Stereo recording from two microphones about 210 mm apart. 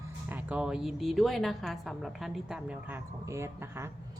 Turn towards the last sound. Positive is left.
turn(degrees=-15)  # may be behind; listen again after turning